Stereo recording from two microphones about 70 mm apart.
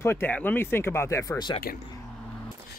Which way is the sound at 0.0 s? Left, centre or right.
Left.